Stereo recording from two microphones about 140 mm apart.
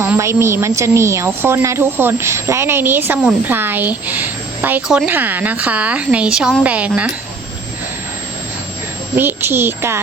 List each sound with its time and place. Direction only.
0.0 s a woman's voice: 20° right (ahead or behind)
9.1 s a woman's voice: 15° right (ahead or behind)